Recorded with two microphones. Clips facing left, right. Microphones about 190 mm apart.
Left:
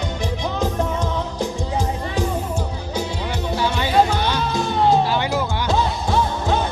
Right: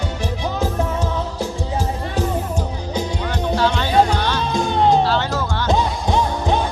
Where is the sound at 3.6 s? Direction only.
15° left (ahead or behind).